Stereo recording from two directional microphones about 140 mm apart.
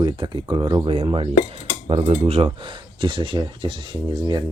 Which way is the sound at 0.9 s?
40° right (ahead or behind).